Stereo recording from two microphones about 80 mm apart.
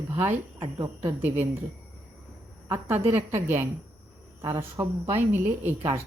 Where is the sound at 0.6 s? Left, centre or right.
Right.